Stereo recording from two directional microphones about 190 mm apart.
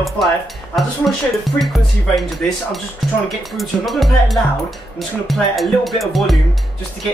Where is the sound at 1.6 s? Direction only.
Centre (ahead or behind).